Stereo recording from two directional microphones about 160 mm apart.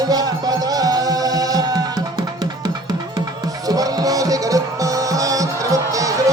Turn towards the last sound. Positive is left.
turn(degrees=-20)  # may be behind; listen again after turning